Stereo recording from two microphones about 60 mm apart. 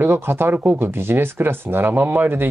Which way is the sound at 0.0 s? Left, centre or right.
Right.